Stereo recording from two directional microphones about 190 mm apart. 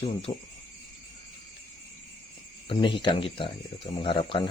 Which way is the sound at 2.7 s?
25° left (ahead or behind).